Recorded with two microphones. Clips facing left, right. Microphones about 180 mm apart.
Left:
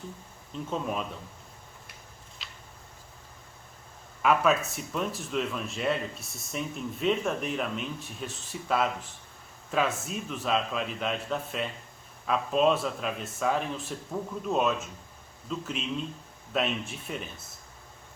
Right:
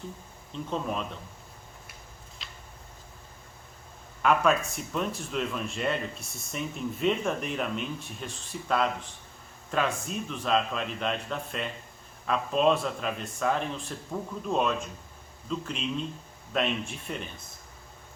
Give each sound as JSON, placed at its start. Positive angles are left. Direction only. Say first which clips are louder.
{"t": 0.7, "sound": "speech", "louder": "even", "side_deg": 5}
{"t": 2.4, "sound": "a sound", "louder": "right 1 dB", "side_deg": 0}
{"t": 4.2, "sound": "speech", "louder": "even", "side_deg": 5}